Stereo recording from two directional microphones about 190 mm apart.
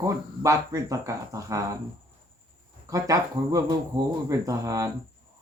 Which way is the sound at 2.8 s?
20° right (ahead or behind).